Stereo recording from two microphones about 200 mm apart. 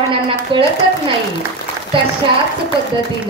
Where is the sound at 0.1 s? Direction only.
25° right (ahead or behind).